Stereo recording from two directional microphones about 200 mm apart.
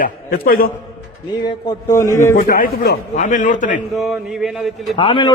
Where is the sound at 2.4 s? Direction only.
45° left (ahead or behind).